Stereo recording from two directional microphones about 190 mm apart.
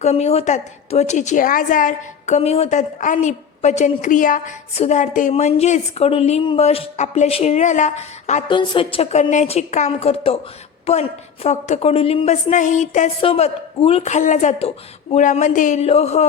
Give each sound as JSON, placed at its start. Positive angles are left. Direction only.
{"t": 0.0, "sound": "a woman's voice", "side_deg": 35}
{"t": 8.4, "sound": "a woman's voice", "side_deg": 25}